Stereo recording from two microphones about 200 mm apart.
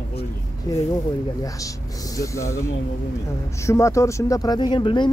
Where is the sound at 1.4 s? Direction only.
15° left (ahead or behind).